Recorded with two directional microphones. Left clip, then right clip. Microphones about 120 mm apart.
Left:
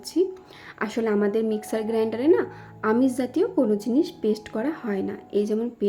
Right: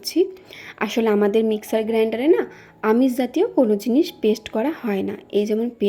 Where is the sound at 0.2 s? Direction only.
20° right (ahead or behind).